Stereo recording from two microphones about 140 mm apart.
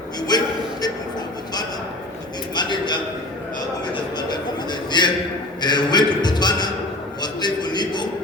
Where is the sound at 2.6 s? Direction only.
30° left (ahead or behind).